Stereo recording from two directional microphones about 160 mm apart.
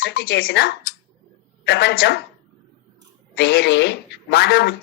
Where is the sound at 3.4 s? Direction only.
90° left.